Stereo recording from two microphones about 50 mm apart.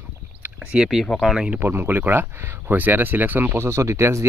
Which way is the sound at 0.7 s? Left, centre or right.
Right.